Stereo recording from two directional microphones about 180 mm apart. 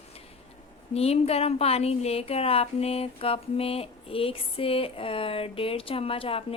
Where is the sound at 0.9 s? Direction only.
35° left (ahead or behind).